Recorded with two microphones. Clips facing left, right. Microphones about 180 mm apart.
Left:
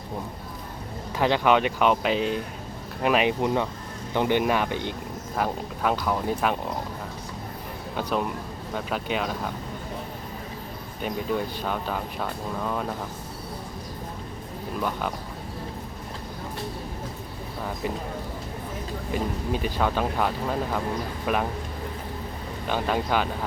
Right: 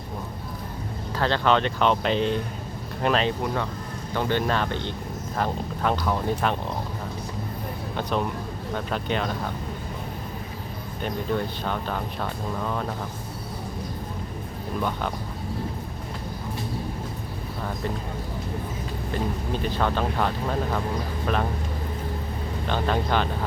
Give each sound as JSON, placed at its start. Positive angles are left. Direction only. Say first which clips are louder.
{"t": 1.1, "sound": "speech", "louder": "left 1 dB", "side_deg": 15}
{"t": 8.7, "sound": "speech", "louder": "right 1 dB", "side_deg": 5}
{"t": 11.0, "sound": "speech", "louder": "even", "side_deg": 5}
{"t": 14.8, "sound": "speech", "louder": "right 1 dB", "side_deg": 5}
{"t": 19.6, "sound": "speech", "louder": "right 1 dB", "side_deg": 10}
{"t": 22.6, "sound": "speech", "louder": "even", "side_deg": 10}